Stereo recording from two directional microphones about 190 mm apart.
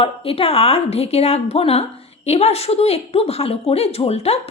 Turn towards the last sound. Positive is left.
turn(degrees=35)  # may be behind; listen again after turning